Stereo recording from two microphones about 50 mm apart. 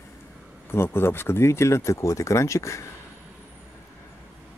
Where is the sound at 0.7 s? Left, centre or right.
Left.